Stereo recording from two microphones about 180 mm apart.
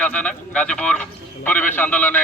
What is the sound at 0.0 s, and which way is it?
A man's voice, 5° left (ahead or behind).